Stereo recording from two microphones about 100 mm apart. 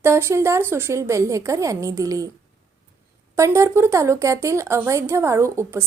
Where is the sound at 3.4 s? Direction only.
30° right (ahead or behind).